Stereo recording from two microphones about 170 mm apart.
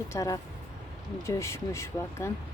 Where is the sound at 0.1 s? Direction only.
20° left (ahead or behind).